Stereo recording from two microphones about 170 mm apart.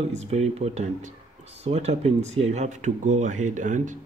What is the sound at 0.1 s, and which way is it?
Speech, 40° right (ahead or behind).